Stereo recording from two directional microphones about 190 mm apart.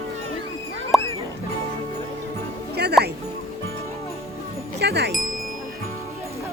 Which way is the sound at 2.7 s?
60° right (ahead or behind).